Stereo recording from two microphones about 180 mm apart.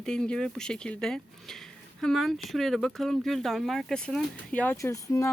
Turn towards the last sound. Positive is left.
turn(degrees=15)  # may be behind; listen again after turning